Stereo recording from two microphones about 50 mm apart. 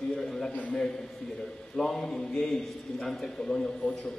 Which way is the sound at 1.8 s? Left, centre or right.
Centre.